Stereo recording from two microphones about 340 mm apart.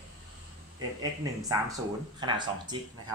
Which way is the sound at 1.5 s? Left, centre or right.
Centre.